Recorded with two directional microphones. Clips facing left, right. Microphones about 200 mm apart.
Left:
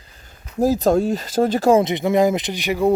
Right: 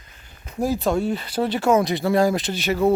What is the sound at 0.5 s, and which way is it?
Speech, 40° left (ahead or behind).